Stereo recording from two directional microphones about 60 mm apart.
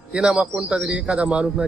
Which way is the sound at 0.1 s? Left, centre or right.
Centre.